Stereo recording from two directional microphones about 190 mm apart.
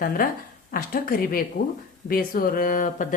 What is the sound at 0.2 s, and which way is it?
Speech, 50° left (ahead or behind).